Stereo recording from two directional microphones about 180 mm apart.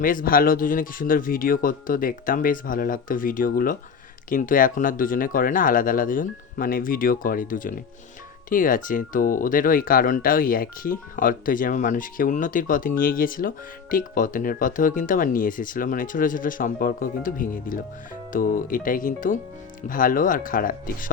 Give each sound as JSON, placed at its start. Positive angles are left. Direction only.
{"t": 0.0, "sound": "speech", "side_deg": 50}